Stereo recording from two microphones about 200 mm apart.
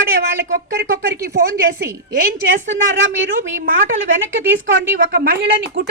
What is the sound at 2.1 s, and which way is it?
Speech, 45° right (ahead or behind).